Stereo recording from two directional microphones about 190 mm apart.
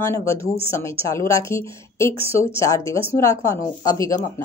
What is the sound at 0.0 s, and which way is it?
Speech, 15° left (ahead or behind).